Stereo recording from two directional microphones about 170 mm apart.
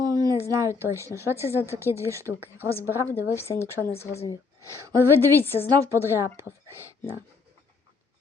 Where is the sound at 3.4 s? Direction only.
15° left (ahead or behind).